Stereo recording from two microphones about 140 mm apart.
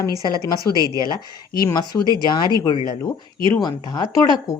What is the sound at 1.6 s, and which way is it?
Speech, 30° left (ahead or behind).